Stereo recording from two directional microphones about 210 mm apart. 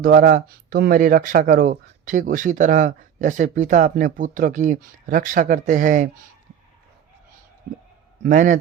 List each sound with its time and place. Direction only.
0.0 s speech: 45° right (ahead or behind)
8.2 s speech: 40° right (ahead or behind)